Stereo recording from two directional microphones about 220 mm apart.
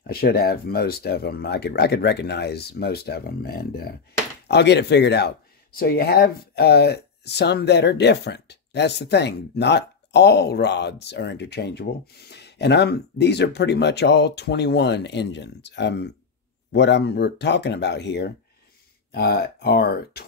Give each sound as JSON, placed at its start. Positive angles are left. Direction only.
{"t": 0.0, "sound": "speech", "side_deg": 45}